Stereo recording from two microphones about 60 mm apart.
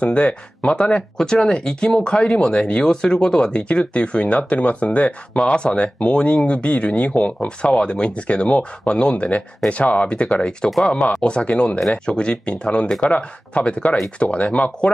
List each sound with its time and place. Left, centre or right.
0.0 s speech: left